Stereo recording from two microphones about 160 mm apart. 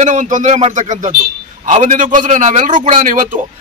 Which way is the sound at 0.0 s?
50° right (ahead or behind).